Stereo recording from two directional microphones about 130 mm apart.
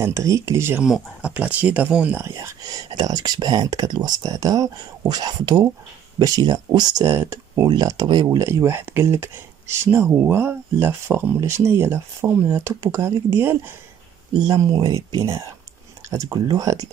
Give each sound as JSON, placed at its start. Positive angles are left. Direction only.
{"t": 0.0, "sound": "speech", "side_deg": -25}
{"t": 0.8, "sound": "speech", "side_deg": -5}
{"t": 7.7, "sound": "speech", "side_deg": -30}
{"t": 14.4, "sound": "speech", "side_deg": -30}